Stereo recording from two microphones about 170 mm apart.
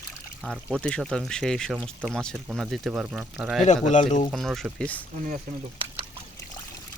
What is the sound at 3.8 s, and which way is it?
Speech, 45° left (ahead or behind).